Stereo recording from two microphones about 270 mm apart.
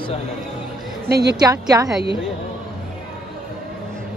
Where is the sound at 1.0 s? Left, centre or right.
Right.